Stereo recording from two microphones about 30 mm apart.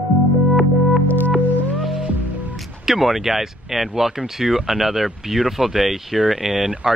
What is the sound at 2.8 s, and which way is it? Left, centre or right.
Speech, centre.